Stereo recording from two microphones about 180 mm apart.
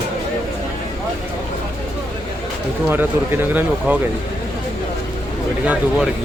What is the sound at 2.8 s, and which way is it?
Speech, 10° right (ahead or behind).